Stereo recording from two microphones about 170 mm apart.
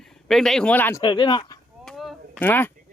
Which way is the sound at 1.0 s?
30° left (ahead or behind).